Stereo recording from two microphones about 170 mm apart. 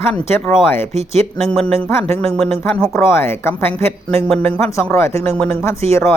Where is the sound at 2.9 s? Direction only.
15° left (ahead or behind).